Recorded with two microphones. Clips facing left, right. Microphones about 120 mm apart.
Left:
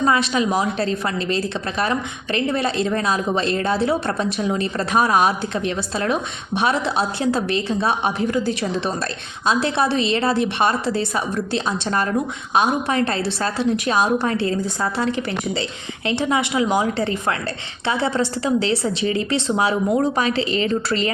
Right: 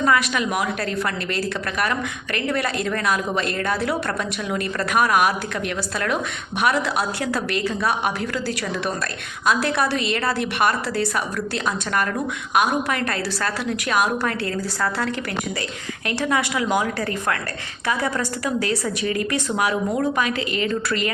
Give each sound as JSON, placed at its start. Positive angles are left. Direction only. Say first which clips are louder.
{"t": 0.0, "sound": "a woman's voice", "louder": "left 2 dB", "side_deg": 25}
{"t": 16.0, "sound": "a woman's voice", "louder": "left 2 dB", "side_deg": 20}